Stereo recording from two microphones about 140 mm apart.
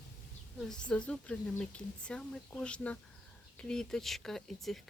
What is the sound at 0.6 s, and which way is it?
Speech, 5° left (ahead or behind).